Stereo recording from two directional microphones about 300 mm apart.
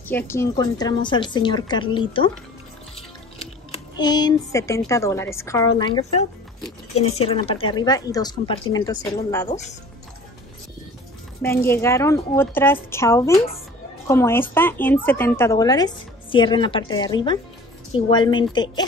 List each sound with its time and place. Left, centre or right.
0.1 s a woman's voice: centre
3.7 s a woman's voice: centre
11.4 s a woman's voice: centre